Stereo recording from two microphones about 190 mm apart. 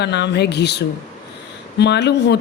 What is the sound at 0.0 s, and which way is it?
Speech, 60° left (ahead or behind).